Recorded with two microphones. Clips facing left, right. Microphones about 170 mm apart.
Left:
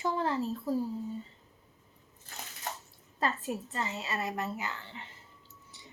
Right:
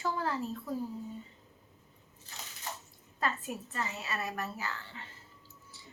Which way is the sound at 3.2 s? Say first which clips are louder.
Left 3 dB; 30° left (ahead or behind).